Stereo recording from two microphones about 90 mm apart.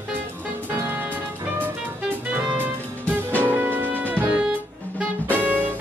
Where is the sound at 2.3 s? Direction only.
20° right (ahead or behind).